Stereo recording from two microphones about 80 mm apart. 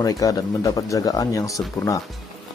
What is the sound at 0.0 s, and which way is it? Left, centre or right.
Speech, left.